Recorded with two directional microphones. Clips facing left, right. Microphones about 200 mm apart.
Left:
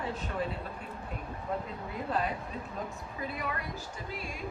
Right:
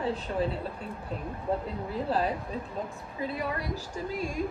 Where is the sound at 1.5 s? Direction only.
30° right (ahead or behind).